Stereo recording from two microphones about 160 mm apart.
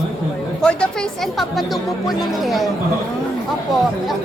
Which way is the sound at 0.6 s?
5° left (ahead or behind).